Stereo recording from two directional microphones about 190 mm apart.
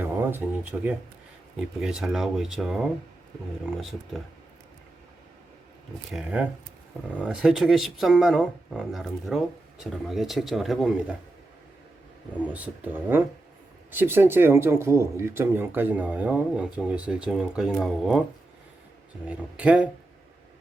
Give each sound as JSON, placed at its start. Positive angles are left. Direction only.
{"t": 0.0, "sound": "speech", "side_deg": -10}
{"t": 6.1, "sound": "speech", "side_deg": -5}
{"t": 12.5, "sound": "speech", "side_deg": -10}
{"t": 19.3, "sound": "speech", "side_deg": -5}